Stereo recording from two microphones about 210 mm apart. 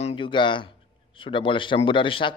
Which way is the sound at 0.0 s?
25° left (ahead or behind).